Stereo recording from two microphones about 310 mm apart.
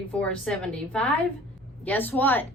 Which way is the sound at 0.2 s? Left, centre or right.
Centre.